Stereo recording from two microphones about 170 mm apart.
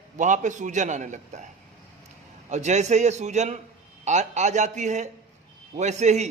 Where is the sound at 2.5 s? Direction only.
45° right (ahead or behind).